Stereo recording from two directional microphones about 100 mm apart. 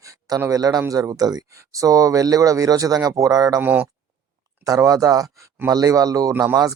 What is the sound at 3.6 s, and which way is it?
Speech, 20° right (ahead or behind).